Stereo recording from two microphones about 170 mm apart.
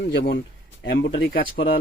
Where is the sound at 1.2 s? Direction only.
65° left (ahead or behind).